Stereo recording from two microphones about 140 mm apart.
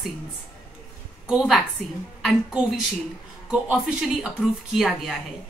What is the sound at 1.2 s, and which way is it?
A woman's voice, 5° right (ahead or behind).